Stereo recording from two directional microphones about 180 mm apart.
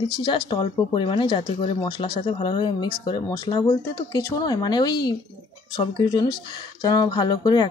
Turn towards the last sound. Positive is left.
turn(degrees=25)  # may be behind; listen again after turning